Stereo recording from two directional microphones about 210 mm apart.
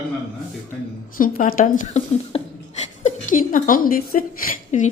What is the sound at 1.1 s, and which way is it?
Speech, 40° left (ahead or behind).